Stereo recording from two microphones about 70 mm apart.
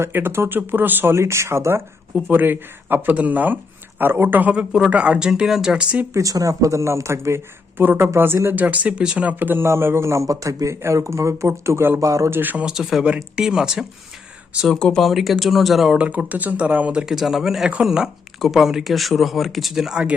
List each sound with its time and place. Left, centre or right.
0.0 s speech: right
1.1 s speech: right
2.2 s speech: right
4.5 s speech: centre
6.1 s speech: right
8.4 s speech: right
12.3 s speech: right
12.6 s speech: centre
14.7 s speech: centre
15.0 s speech: centre
16.0 s speech: right
17.1 s speech: centre